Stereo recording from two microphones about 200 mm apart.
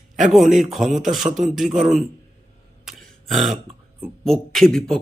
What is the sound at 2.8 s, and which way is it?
Burping, centre (ahead or behind).